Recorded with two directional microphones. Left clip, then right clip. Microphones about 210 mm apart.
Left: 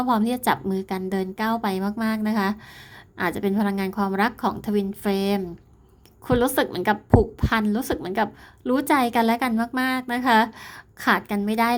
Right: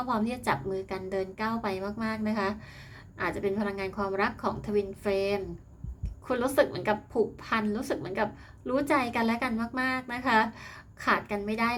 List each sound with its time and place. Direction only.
0.0 s a woman's voice: 50° left (ahead or behind)